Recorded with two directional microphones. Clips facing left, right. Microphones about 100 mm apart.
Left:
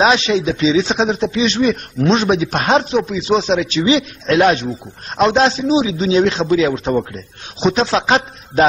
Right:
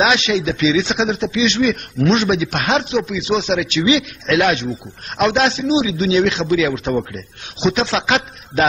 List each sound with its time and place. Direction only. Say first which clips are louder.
0.0 s speech: left 2 dB; 35° left (ahead or behind)